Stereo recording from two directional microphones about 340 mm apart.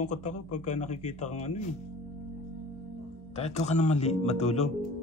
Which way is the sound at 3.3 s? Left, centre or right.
Centre.